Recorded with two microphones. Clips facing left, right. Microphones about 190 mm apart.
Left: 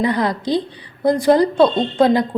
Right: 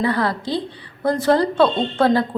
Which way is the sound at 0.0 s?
15° left (ahead or behind).